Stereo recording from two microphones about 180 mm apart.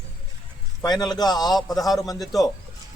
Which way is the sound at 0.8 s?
20° left (ahead or behind).